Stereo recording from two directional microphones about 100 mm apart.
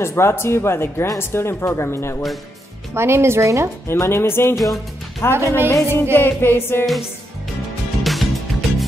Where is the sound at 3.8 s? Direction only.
25° left (ahead or behind).